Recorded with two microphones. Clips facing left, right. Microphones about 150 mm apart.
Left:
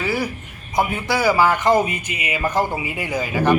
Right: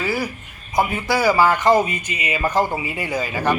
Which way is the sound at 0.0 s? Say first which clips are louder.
Left 1 dB; centre (ahead or behind).